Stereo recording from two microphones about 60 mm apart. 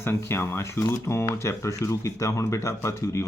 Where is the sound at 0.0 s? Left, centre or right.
Left.